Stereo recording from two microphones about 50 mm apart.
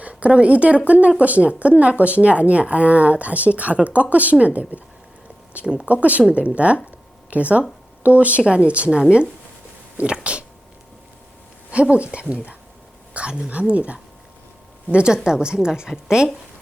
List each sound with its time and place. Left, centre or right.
0.0 s speech: right
11.7 s a woman's voice: right